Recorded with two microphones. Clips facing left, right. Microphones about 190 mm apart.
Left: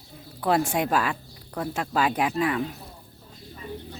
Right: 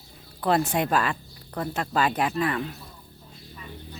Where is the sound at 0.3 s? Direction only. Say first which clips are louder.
Even; 10° left (ahead or behind).